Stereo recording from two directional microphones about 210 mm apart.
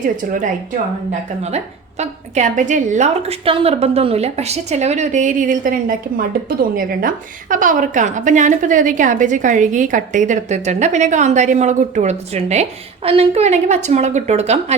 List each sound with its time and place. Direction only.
1.4 s a woman's voice: 30° right (ahead or behind)